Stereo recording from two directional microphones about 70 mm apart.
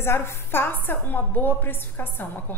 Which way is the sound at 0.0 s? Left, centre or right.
Left.